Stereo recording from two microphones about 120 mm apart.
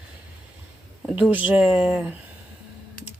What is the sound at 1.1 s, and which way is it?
Speech, 15° right (ahead or behind).